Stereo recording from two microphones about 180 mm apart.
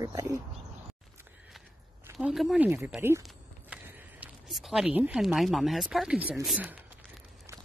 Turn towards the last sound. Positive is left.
turn(degrees=-5)  # may be behind; listen again after turning